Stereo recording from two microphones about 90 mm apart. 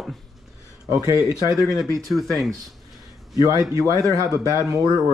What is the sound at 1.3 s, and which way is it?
Speech, 40° left (ahead or behind).